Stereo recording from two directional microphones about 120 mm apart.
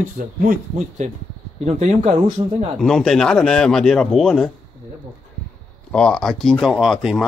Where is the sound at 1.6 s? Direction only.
65° right (ahead or behind).